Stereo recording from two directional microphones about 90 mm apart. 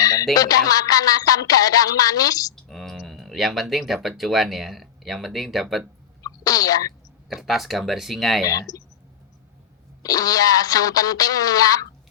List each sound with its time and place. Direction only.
0.0 s music: 40° left (ahead or behind)
2.6 s a sound: centre (ahead or behind)
4.2 s speech: centre (ahead or behind)
6.2 s speech: 45° left (ahead or behind)
7.3 s speech: centre (ahead or behind)
8.7 s music: 45° left (ahead or behind)
10.0 s music: 45° left (ahead or behind)